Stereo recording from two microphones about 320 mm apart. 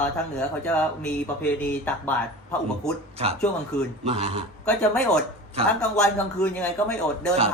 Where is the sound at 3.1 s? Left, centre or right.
Centre.